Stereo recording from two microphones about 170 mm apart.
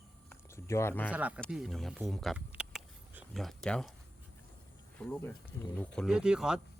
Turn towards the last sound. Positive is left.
turn(degrees=-5)  # may be behind; listen again after turning